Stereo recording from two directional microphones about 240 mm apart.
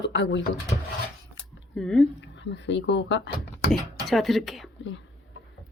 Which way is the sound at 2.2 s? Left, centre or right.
Left.